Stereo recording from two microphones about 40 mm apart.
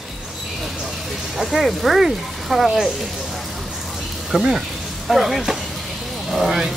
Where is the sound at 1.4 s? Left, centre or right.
Centre.